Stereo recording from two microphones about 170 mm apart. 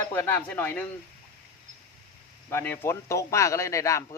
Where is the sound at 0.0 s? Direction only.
15° left (ahead or behind).